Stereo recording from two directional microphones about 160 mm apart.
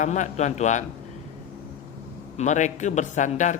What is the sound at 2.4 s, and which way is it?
A man's voice, 50° left (ahead or behind).